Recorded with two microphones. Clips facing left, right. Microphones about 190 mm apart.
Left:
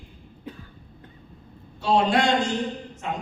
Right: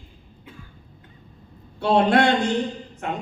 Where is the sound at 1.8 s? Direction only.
60° right (ahead or behind).